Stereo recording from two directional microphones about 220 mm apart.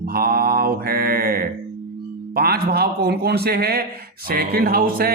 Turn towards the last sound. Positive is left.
turn(degrees=-40)  # may be behind; listen again after turning